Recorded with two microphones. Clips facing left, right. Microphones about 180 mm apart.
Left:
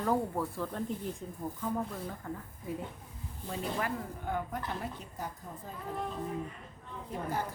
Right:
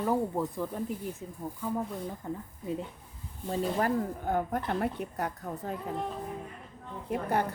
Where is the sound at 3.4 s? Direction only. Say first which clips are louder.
Right 6 dB; 40° right (ahead or behind); by 5.7 s 70° right (ahead or behind).